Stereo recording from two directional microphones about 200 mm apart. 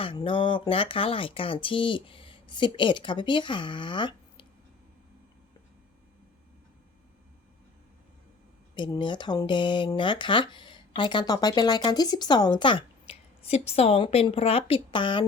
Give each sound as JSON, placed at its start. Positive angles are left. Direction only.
{"t": 0.0, "sound": "speech", "side_deg": 25}
{"t": 8.7, "sound": "speech", "side_deg": 25}